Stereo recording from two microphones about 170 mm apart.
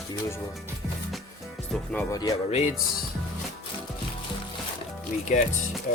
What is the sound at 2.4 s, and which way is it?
Speech, 40° left (ahead or behind).